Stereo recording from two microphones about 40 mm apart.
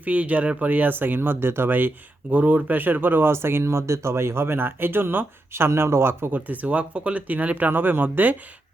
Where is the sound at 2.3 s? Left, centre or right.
Right.